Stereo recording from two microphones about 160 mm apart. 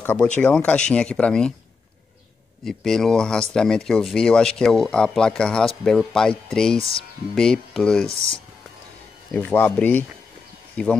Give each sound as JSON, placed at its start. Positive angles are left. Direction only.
{"t": 0.0, "sound": "speech", "side_deg": 15}
{"t": 2.6, "sound": "speech", "side_deg": 5}
{"t": 6.8, "sound": "speech", "side_deg": 35}
{"t": 7.3, "sound": "speech", "side_deg": 5}
{"t": 9.5, "sound": "speech", "side_deg": 10}